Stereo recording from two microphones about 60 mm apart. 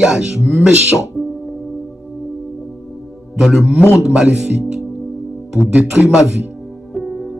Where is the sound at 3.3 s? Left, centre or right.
Centre.